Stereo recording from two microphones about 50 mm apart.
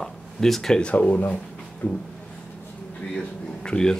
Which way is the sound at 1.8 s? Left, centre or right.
Left.